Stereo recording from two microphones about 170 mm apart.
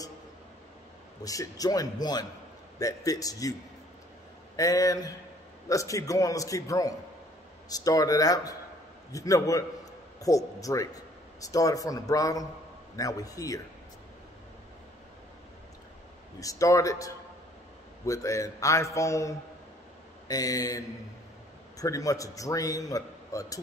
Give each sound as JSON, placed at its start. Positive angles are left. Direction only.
{"t": 1.2, "sound": "a man's voice", "side_deg": 20}
{"t": 4.6, "sound": "a man's voice", "side_deg": 20}
{"t": 16.3, "sound": "a man's voice", "side_deg": 20}